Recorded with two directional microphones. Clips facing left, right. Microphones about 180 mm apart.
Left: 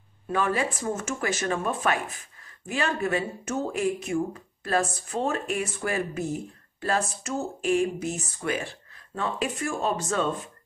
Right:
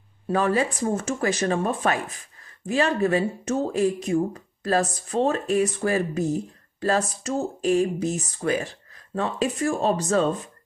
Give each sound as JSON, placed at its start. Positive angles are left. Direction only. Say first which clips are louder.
{"t": 0.3, "sound": "speech", "louder": "right 4 dB", "side_deg": -35}